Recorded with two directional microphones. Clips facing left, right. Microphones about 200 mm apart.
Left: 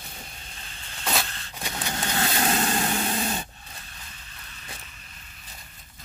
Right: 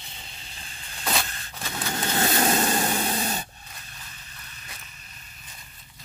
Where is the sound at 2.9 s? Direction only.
35° right (ahead or behind).